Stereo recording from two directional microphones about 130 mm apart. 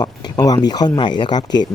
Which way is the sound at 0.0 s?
30° left (ahead or behind).